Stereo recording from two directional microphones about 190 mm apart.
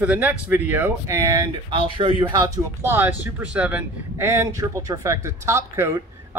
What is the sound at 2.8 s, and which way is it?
Speech, 10° right (ahead or behind).